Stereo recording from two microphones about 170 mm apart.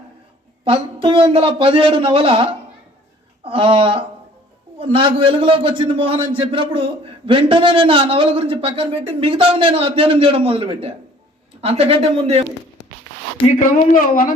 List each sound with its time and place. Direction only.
0.6 s a man's voice: 30° right (ahead or behind)
13.6 s speech: 55° left (ahead or behind)